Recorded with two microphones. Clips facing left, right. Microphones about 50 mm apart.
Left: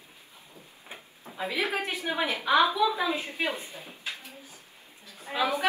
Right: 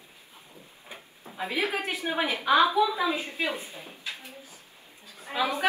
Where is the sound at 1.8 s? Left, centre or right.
Right.